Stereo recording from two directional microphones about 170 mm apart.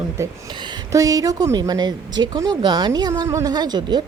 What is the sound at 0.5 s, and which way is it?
A woman's voice, 25° right (ahead or behind).